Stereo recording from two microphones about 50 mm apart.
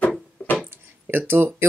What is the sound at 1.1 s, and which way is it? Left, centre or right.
Speech, right.